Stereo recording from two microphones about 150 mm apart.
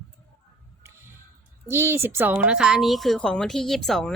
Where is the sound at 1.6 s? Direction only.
15° right (ahead or behind).